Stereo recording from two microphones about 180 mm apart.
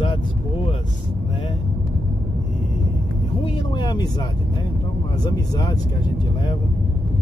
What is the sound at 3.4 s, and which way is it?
Speech, 25° left (ahead or behind).